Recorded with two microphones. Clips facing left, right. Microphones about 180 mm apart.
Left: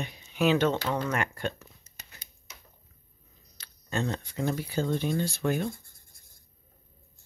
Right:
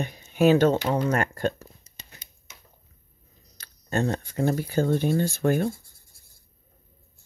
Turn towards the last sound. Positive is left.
turn(degrees=-50)  # may be behind; listen again after turning